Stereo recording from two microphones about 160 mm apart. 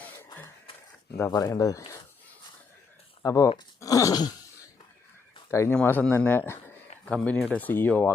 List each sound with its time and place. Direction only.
1.1 s speech: 20° left (ahead or behind)
3.2 s speech: 20° left (ahead or behind)
5.5 s speech: 20° left (ahead or behind)